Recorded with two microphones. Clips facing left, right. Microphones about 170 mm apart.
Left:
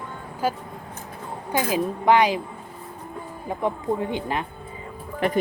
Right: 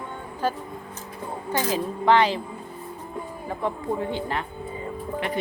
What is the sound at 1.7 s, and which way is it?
Speech, 15° left (ahead or behind).